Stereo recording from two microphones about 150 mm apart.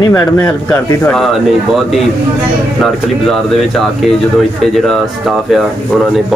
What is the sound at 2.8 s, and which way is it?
Speech, centre (ahead or behind).